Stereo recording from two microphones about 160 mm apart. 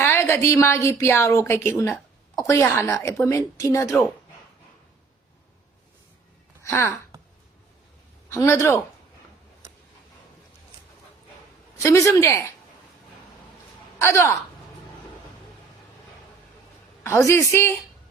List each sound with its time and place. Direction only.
0.0 s a woman's voice: 15° left (ahead or behind)
6.6 s speech: 15° left (ahead or behind)
8.3 s a woman's voice: 15° left (ahead or behind)
11.8 s a woman's voice: 20° left (ahead or behind)
14.0 s a woman's voice: 15° left (ahead or behind)
17.0 s a woman's voice: 15° left (ahead or behind)